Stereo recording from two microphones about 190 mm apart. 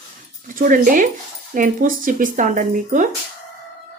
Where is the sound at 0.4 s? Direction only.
45° right (ahead or behind).